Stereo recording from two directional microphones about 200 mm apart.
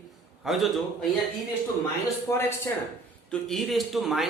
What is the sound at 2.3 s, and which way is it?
Speech, 15° left (ahead or behind).